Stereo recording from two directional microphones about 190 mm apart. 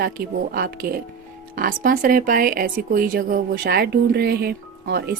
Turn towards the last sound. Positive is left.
turn(degrees=-55)  # may be behind; listen again after turning